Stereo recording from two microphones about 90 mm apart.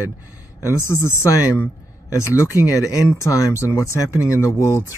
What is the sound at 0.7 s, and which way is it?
Speech, 30° left (ahead or behind).